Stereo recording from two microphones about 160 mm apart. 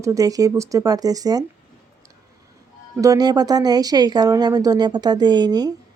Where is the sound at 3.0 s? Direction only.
25° right (ahead or behind).